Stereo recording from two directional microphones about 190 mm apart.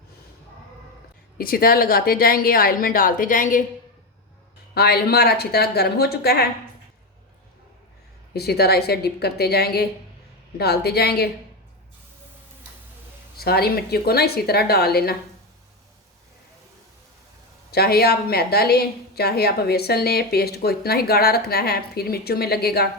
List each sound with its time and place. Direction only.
1.4 s speech: 50° left (ahead or behind)
4.7 s a woman's voice: 55° left (ahead or behind)
8.3 s a woman's voice: 55° left (ahead or behind)
13.4 s a woman's voice: 55° left (ahead or behind)
17.7 s a woman's voice: 55° left (ahead or behind)